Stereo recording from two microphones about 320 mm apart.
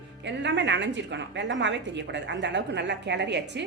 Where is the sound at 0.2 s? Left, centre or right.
Right.